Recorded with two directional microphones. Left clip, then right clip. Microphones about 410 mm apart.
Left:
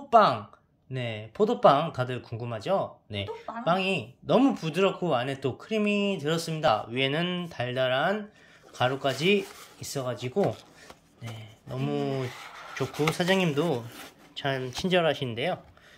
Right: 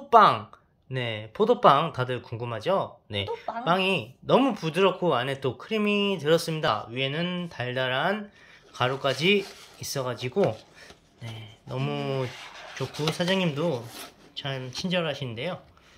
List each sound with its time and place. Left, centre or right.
0.1 s speech: centre
11.7 s speech: centre